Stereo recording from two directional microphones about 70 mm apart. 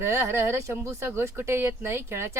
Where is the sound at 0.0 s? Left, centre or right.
Right.